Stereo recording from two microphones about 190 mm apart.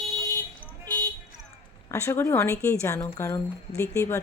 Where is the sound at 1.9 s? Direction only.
15° left (ahead or behind).